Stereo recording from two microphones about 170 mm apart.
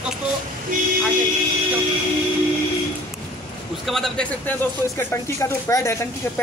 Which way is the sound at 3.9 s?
Centre (ahead or behind).